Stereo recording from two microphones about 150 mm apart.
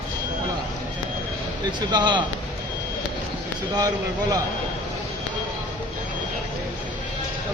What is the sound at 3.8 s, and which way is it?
Speech, 25° right (ahead or behind).